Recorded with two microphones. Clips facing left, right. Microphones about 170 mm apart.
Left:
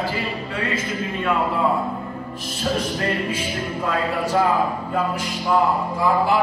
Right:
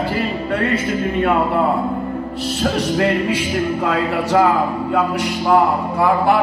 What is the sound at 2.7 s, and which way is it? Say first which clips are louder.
Music: right 5 dB; 75° right (ahead or behind).